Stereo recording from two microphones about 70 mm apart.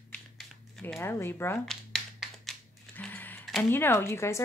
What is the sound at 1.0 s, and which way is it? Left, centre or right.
Speech, left.